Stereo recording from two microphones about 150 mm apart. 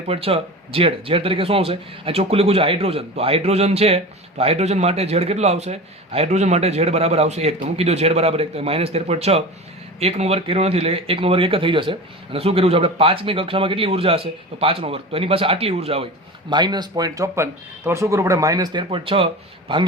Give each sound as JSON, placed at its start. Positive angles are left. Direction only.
{"t": 0.1, "sound": "speech", "side_deg": -40}
{"t": 16.5, "sound": "speech", "side_deg": -30}